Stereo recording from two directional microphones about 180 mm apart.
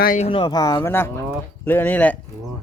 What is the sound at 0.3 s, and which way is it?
Speech, 30° left (ahead or behind).